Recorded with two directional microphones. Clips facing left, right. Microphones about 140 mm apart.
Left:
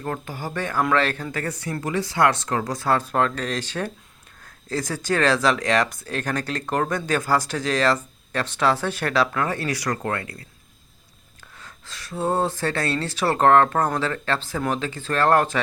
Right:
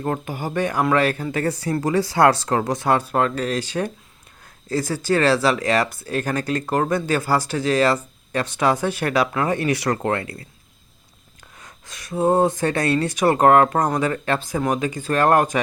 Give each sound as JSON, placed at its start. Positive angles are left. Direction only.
{"t": 0.0, "sound": "speech", "side_deg": -20}
{"t": 1.3, "sound": "speech", "side_deg": -30}
{"t": 2.7, "sound": "speech", "side_deg": -15}
{"t": 11.6, "sound": "speech", "side_deg": -20}